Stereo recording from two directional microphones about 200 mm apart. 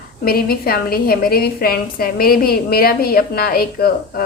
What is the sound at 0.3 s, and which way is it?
A woman's voice, 50° left (ahead or behind).